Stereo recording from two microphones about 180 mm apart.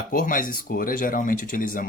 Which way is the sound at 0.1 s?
50° left (ahead or behind).